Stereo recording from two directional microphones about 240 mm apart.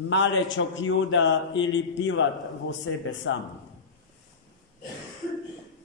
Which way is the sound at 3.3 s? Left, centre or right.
Left.